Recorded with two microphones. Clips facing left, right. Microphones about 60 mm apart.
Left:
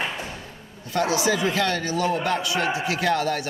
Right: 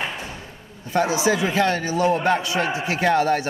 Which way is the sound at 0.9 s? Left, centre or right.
Right.